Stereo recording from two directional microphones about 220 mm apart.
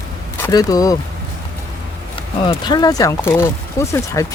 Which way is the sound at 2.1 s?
20° left (ahead or behind).